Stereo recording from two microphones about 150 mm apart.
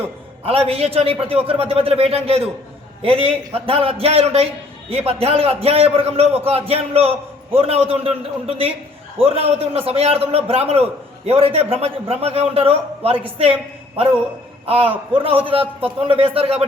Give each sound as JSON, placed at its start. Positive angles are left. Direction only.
{"t": 0.4, "sound": "a man's voice", "side_deg": -40}